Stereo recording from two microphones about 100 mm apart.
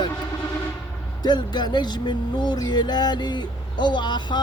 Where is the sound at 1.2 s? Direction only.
45° left (ahead or behind).